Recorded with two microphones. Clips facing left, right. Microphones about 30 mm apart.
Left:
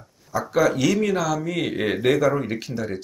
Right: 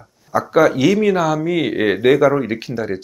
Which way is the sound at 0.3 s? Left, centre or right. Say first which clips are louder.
Right 6 dB; centre.